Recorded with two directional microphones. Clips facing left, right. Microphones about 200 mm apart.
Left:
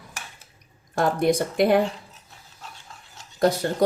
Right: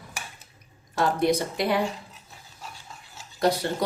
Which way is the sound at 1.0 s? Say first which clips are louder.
Left 2 dB; 50° left (ahead or behind).